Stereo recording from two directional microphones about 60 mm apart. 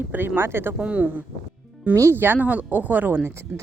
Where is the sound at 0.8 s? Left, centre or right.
Right.